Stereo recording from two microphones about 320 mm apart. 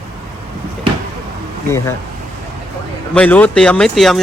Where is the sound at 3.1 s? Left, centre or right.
Centre.